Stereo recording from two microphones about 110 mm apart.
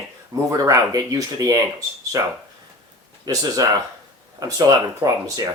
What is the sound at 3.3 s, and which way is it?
Speech, 35° right (ahead or behind).